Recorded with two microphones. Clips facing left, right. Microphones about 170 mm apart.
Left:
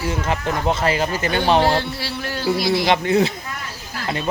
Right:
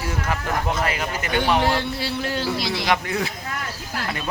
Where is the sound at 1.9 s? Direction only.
20° right (ahead or behind).